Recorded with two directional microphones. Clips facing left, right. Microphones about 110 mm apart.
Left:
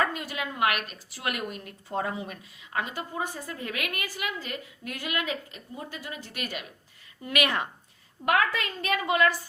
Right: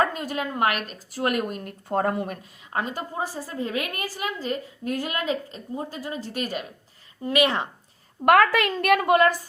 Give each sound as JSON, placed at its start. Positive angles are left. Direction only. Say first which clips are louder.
{"t": 0.0, "sound": "a woman's voice", "louder": "right 4 dB", "side_deg": -40}
{"t": 8.2, "sound": "a woman's voice", "louder": "right 8 dB", "side_deg": -60}